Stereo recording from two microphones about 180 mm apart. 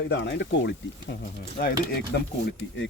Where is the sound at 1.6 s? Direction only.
65° left (ahead or behind).